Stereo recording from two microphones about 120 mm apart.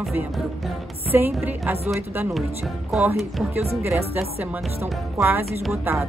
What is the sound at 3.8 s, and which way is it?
Speech, 20° right (ahead or behind).